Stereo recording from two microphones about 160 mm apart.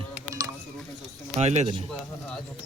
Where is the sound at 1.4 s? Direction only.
45° right (ahead or behind).